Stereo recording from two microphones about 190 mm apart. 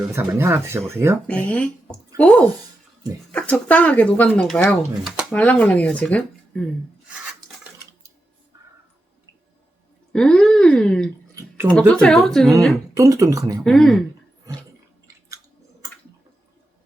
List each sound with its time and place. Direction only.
0.2 s speech: 10° right (ahead or behind)
1.3 s speech: 5° left (ahead or behind)
10.1 s speech: 5° left (ahead or behind)
11.3 s a sound: 10° right (ahead or behind)
11.9 s speech: 5° left (ahead or behind)
12.9 s speech: 15° right (ahead or behind)
13.7 s speech: centre (ahead or behind)